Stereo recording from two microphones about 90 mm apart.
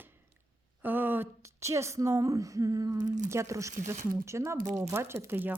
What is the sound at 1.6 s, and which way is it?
Speech, 35° right (ahead or behind).